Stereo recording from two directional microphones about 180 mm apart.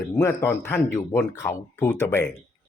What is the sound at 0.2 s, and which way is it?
Speech, 10° left (ahead or behind).